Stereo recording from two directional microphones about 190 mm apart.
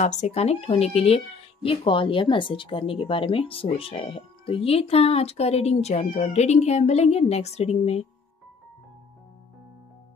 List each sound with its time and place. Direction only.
0.0 s speech: 35° left (ahead or behind)